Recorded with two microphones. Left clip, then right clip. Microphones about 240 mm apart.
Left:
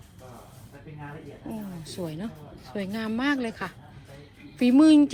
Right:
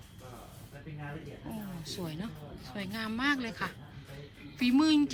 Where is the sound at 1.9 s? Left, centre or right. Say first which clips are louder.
Left 8 dB; centre.